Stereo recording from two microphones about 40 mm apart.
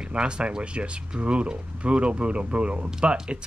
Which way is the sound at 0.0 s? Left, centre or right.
Right.